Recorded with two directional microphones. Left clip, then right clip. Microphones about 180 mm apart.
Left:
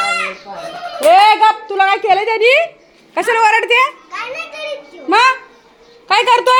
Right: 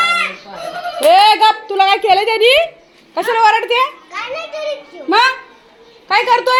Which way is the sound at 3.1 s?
15° left (ahead or behind).